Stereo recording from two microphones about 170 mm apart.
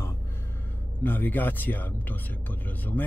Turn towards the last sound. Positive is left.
turn(degrees=10)  # may be behind; listen again after turning